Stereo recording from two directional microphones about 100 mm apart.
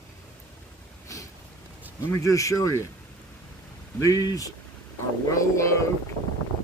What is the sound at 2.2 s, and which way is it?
Speech, 30° left (ahead or behind).